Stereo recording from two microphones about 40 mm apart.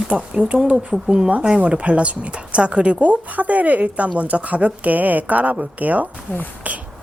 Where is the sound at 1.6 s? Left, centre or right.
Right.